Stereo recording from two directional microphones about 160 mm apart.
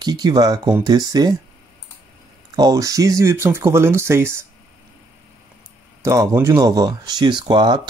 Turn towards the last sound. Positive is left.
turn(degrees=-30)  # may be behind; listen again after turning